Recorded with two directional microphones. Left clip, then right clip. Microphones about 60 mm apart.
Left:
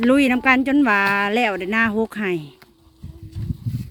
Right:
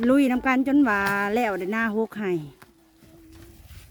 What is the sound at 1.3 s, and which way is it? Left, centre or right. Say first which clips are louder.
Speech: left 5 dB; right.